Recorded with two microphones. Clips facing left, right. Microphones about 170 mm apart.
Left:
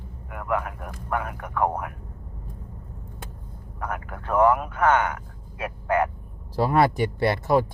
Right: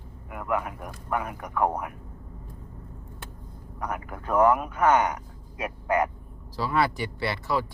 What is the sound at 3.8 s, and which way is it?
Speech, 45° left (ahead or behind).